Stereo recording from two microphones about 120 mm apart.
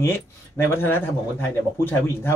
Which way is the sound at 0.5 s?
20° left (ahead or behind).